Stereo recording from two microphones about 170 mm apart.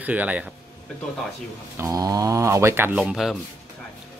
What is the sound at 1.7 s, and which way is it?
Speech, 20° right (ahead or behind).